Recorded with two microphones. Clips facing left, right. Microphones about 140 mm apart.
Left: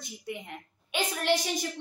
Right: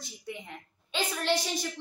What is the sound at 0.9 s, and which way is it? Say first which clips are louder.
Speech: left 2 dB; 15° left (ahead or behind).